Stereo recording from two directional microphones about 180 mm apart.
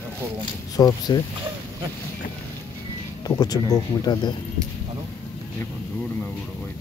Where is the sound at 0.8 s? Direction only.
20° left (ahead or behind).